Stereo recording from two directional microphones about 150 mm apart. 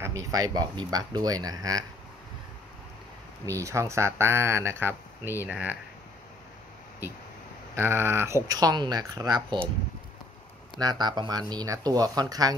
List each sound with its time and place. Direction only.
0.0 s speech: 20° right (ahead or behind)
3.4 s speech: 20° right (ahead or behind)
7.7 s speech: 15° right (ahead or behind)
10.8 s speech: 30° right (ahead or behind)